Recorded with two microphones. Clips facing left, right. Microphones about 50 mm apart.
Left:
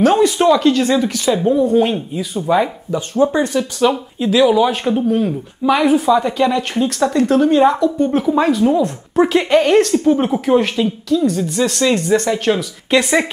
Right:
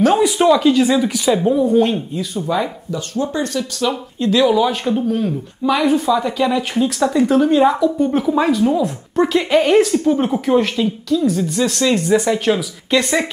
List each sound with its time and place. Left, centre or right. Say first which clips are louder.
0.0 s speech: left 1 dB; centre
1.8 s speech: even; centre
2.3 s speech: left 5 dB; centre
3.9 s speech: left 1 dB; centre
9.6 s speech: right 1 dB; centre
9.9 s speech: left 2 dB; centre